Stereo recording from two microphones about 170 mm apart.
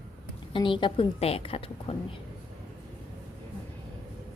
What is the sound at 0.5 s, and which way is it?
A woman's voice, 30° left (ahead or behind).